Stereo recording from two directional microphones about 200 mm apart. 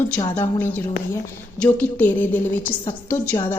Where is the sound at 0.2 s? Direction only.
15° left (ahead or behind).